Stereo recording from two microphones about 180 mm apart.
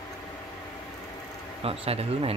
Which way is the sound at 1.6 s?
35° right (ahead or behind).